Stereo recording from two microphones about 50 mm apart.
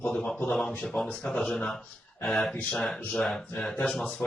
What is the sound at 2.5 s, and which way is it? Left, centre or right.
Speech, left.